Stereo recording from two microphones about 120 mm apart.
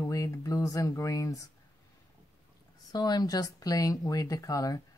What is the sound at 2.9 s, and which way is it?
Speech, 35° left (ahead or behind).